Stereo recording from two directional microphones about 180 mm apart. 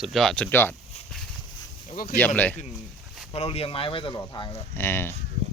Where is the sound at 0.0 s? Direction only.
Centre (ahead or behind).